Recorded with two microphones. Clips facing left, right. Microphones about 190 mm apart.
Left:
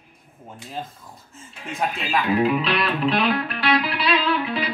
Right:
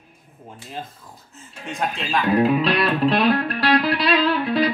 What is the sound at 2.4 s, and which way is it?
Music, 40° right (ahead or behind).